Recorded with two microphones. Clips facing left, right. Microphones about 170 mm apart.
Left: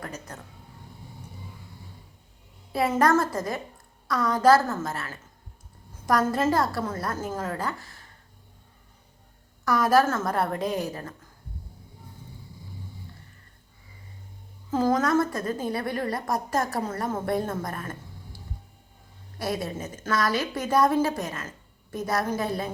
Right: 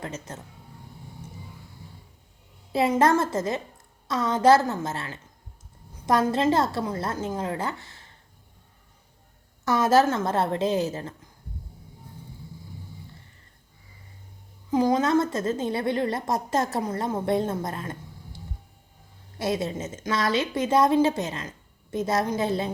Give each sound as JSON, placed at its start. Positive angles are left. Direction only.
{"t": 0.0, "sound": "a woman's voice", "side_deg": -25}
{"t": 3.0, "sound": "a woman's voice", "side_deg": -25}
{"t": 6.3, "sound": "a woman's voice", "side_deg": -25}
{"t": 9.6, "sound": "a woman's voice", "side_deg": -25}
{"t": 14.7, "sound": "a woman's voice", "side_deg": -15}
{"t": 19.4, "sound": "a woman's voice", "side_deg": -20}